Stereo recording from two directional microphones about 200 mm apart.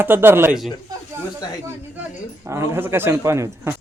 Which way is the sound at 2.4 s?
15° right (ahead or behind).